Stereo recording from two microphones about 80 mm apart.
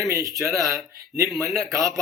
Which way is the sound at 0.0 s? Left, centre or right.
Right.